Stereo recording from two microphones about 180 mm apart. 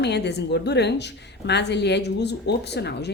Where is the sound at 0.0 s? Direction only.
70° left (ahead or behind).